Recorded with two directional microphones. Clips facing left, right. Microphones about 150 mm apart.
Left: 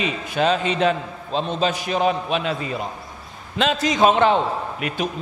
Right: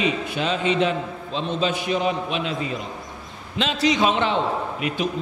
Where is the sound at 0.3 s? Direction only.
45° left (ahead or behind).